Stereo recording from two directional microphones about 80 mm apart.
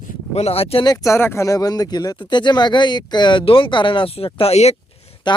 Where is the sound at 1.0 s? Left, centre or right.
Left.